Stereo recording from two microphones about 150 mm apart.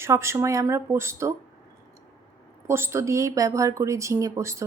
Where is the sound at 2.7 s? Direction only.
20° right (ahead or behind).